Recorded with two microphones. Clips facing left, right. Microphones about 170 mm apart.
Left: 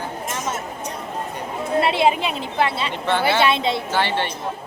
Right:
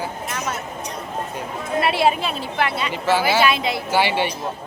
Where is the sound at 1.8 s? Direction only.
20° left (ahead or behind).